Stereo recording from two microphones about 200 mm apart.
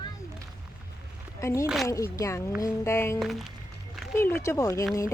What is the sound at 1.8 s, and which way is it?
Speech, 15° left (ahead or behind).